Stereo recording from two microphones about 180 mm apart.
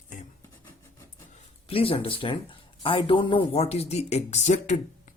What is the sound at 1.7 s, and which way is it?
Speech, 30° left (ahead or behind).